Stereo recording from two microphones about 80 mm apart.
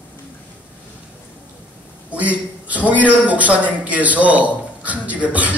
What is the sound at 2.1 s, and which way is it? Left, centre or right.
A woman's voice, centre.